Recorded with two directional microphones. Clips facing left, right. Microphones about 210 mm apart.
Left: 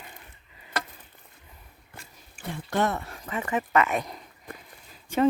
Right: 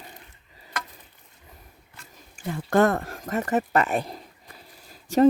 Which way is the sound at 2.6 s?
50° right (ahead or behind).